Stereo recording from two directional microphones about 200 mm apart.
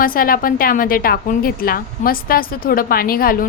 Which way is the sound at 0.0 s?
45° left (ahead or behind).